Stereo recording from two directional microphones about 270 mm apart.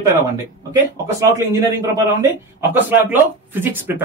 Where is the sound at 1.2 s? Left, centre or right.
Centre.